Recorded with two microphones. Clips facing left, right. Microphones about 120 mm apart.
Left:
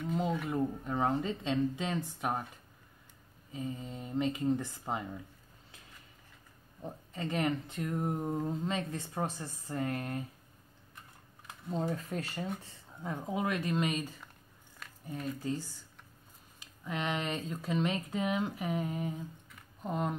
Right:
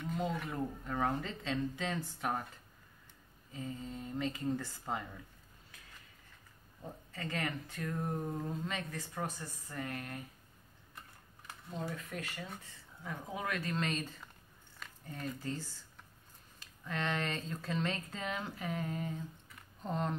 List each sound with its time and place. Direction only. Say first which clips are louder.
0.5 s speech: left 6 dB; 20° left (ahead or behind)
3.5 s speech: left 3 dB; 20° left (ahead or behind)
6.8 s speech: left 5 dB; 20° left (ahead or behind)
11.7 s speech: left 7 dB; 30° left (ahead or behind); by 14.1 s 10° left (ahead or behind)
16.5 s speech: left 2 dB; 15° left (ahead or behind)
19.5 s a sound: left 2 dB; 10° left (ahead or behind)